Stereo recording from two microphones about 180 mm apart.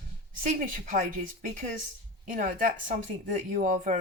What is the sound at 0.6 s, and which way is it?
Speech, 45° right (ahead or behind).